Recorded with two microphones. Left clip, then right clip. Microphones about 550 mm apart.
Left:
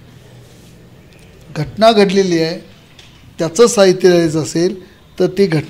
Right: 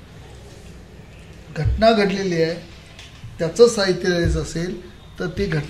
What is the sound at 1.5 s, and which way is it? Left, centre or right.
A man's voice, left.